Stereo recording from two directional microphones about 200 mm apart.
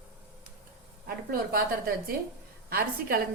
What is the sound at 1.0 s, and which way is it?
A woman's voice, 50° right (ahead or behind).